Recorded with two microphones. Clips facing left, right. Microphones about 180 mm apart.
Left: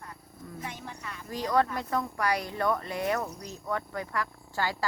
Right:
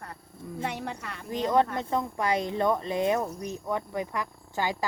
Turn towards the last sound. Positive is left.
turn(degrees=-20)  # may be behind; listen again after turning